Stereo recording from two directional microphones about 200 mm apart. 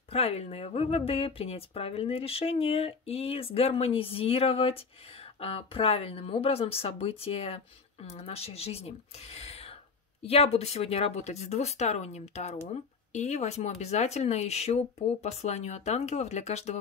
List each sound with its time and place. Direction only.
0.1 s a woman's voice: 30° left (ahead or behind)